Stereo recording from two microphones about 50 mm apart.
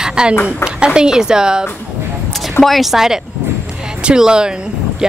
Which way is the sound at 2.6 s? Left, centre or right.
Centre.